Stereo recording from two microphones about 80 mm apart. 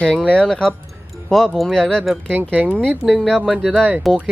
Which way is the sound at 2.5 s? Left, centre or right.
Centre.